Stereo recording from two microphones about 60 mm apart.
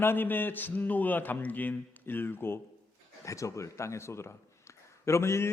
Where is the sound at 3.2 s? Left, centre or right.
Left.